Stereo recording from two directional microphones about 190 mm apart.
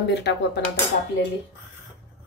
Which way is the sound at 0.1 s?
65° left (ahead or behind).